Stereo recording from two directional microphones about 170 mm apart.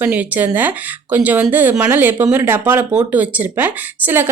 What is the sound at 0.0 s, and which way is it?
Speech, 10° right (ahead or behind).